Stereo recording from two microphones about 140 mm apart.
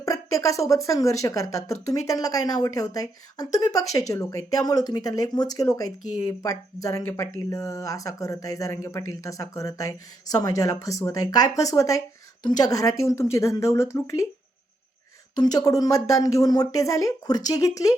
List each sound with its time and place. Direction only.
0.0 s speech: 25° left (ahead or behind)
15.4 s speech: 25° left (ahead or behind)